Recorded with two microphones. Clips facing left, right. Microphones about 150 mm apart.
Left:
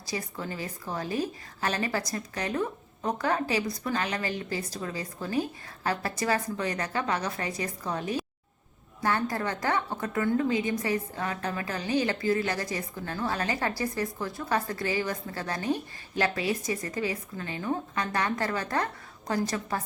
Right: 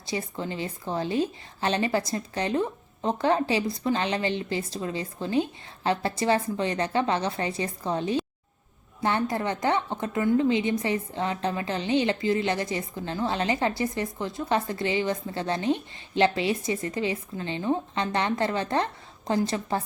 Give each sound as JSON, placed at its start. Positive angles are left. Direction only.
{"t": 0.0, "sound": "a woman's voice", "side_deg": -25}